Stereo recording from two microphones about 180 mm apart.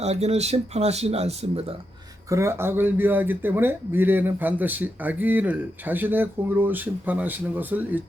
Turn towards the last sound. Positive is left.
turn(degrees=-10)  # may be behind; listen again after turning